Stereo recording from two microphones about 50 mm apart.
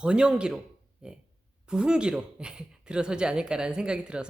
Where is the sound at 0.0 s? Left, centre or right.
Centre.